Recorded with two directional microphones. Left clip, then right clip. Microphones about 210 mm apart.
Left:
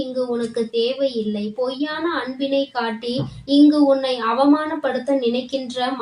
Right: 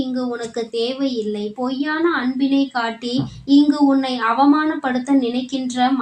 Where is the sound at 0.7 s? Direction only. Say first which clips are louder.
Left 1 dB; 35° right (ahead or behind).